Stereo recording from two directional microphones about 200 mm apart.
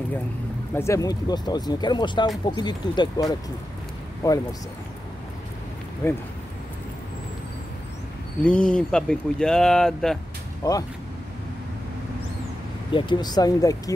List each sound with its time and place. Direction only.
0.7 s speech: 15° left (ahead or behind)
6.0 s speech: 10° left (ahead or behind)
8.5 s speech: 5° left (ahead or behind)
10.6 s speech: 15° left (ahead or behind)
12.9 s speech: 20° left (ahead or behind)